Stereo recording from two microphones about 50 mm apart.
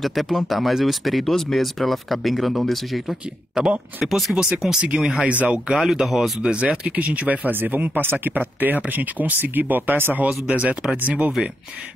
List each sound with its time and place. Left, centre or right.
0.0 s speech: centre
3.6 s speech: centre
4.0 s speech: centre
4.8 s speech: centre
5.7 s speech: centre
6.4 s speech: right
10.4 s speech: right